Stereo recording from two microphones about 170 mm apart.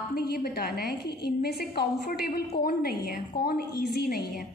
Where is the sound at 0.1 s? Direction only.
65° left (ahead or behind).